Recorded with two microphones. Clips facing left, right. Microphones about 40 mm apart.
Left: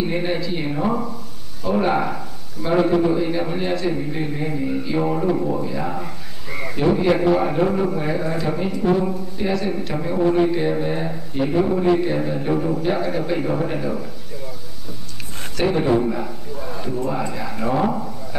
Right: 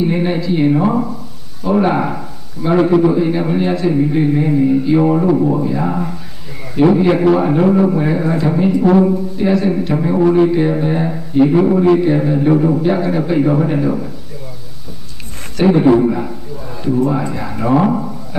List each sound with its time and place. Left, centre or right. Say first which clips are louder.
0.0 s a man's voice: right 6 dB; centre
0.7 s a man's voice: right 7 dB; centre
11.8 s a man's voice: right 7 dB; centre
13.0 s a man's voice: right 7 dB; centre
15.6 s a man's voice: right 8 dB; centre
16.0 s a sound: right 7 dB; centre
17.0 s a man's voice: right 5 dB; centre